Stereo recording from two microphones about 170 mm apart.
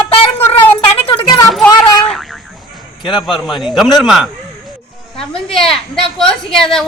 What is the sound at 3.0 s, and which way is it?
Speech, 30° left (ahead or behind).